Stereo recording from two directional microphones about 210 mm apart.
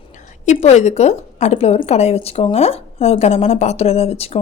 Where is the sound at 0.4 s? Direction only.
35° left (ahead or behind).